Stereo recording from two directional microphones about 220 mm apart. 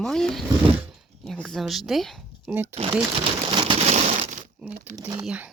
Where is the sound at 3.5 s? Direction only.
20° right (ahead or behind).